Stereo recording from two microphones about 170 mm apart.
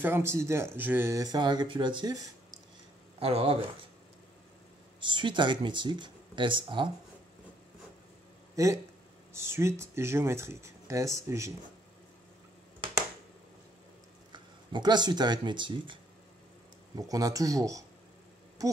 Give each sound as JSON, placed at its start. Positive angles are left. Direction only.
{"t": 0.0, "sound": "speech", "side_deg": -15}
{"t": 3.2, "sound": "speech", "side_deg": -35}
{"t": 5.0, "sound": "speech", "side_deg": -30}
{"t": 8.6, "sound": "speech", "side_deg": -20}
{"t": 14.3, "sound": "speech", "side_deg": -25}